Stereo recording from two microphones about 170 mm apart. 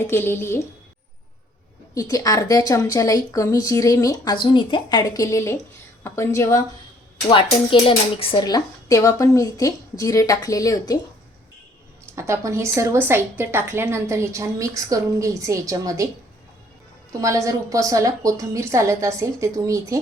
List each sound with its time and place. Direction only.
0.1 s speech: 15° left (ahead or behind)
2.0 s a woman's voice: 20° left (ahead or behind)
7.3 s speech: 30° left (ahead or behind)
12.1 s a woman's voice: 15° right (ahead or behind)
17.1 s a woman's voice: 20° right (ahead or behind)